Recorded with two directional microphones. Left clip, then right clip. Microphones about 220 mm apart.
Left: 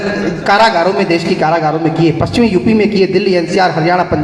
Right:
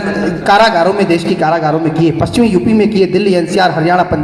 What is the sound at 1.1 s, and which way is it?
A man's voice, 55° right (ahead or behind).